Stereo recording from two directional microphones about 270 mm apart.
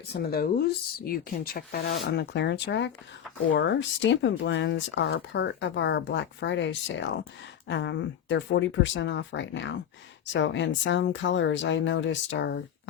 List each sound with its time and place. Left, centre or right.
0.1 s speech: left